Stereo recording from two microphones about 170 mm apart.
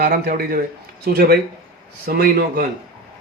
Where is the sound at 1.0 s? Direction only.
70° right (ahead or behind).